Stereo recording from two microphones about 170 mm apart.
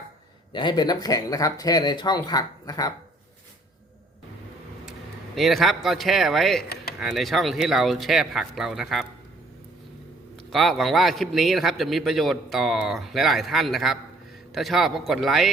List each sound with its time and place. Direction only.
0.5 s speech: 25° left (ahead or behind)
4.9 s a man's voice: centre (ahead or behind)
10.5 s a man's voice: centre (ahead or behind)